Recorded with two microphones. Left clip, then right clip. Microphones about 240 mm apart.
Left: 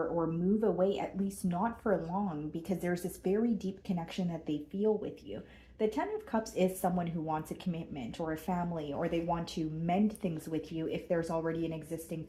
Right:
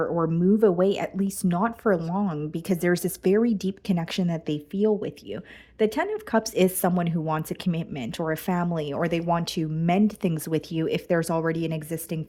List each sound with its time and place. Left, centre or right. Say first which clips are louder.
0.2 s speech: right 10 dB; right